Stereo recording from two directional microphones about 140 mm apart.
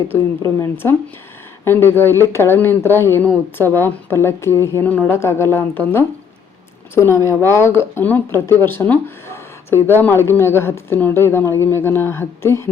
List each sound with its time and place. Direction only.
0.4 s speech: 20° left (ahead or behind)